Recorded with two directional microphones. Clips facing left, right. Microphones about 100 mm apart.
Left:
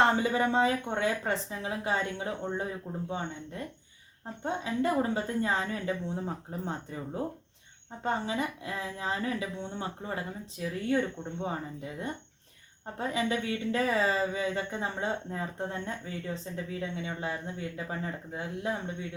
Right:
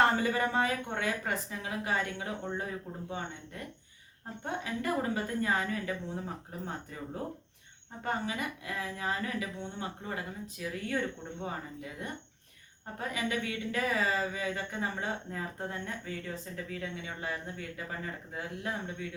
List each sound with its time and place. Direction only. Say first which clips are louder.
0.0 s speech: left 2 dB; 20° left (ahead or behind)
4.4 s speech: left 5 dB; 25° left (ahead or behind)
8.0 s speech: left 3 dB; 25° left (ahead or behind)